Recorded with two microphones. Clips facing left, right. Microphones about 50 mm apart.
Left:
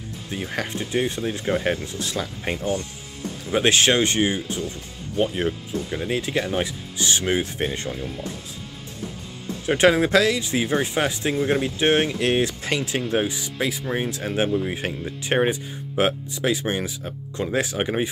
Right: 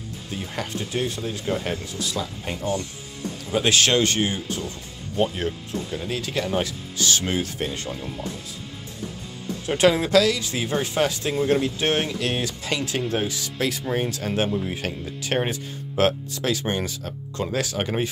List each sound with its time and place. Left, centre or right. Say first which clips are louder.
0.3 s speech: left 2 dB; left
4.6 s speech: left 1 dB; right
5.3 s speech: left 3 dB; left
9.7 s speech: left 2 dB; left